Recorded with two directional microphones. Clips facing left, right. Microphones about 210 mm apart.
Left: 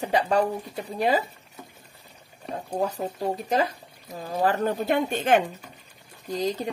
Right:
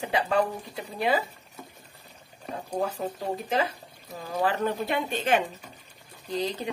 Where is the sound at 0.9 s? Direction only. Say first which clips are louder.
Left 2 dB; 40° left (ahead or behind).